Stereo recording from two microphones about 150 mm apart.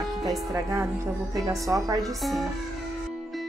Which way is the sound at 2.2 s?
Centre (ahead or behind).